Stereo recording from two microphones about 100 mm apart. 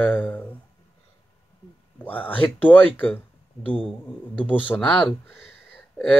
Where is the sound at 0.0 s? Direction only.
15° left (ahead or behind).